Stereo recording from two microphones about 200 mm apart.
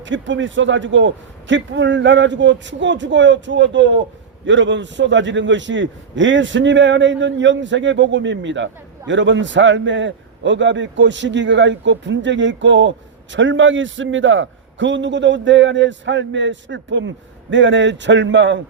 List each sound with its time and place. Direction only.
0.0 s a man's voice: 65° right (ahead or behind)